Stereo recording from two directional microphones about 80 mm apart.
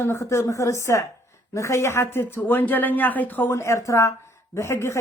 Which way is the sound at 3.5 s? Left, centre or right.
Left.